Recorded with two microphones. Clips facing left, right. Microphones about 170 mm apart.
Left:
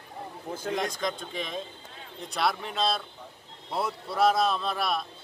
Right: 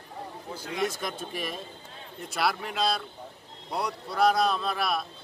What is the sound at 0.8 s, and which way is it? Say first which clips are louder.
Speech: even; 5° right (ahead or behind).